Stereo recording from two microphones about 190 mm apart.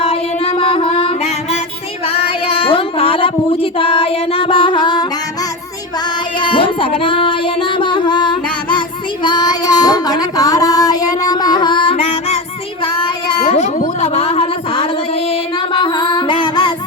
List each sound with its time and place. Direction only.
0.0 s music: 35° left (ahead or behind)
2.0 s child singing: 30° left (ahead or behind)
6.4 s music: 25° left (ahead or behind)
9.2 s female singing: 20° left (ahead or behind)
12.8 s child singing: 25° left (ahead or behind)
13.7 s a sound: 40° left (ahead or behind)
15.3 s music: 25° left (ahead or behind)